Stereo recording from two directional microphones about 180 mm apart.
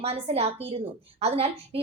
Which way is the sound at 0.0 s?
35° right (ahead or behind).